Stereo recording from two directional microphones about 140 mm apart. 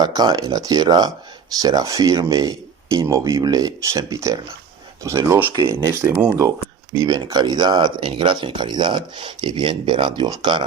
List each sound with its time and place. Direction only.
0.0 s speech: 30° right (ahead or behind)
7.0 s speech: 30° right (ahead or behind)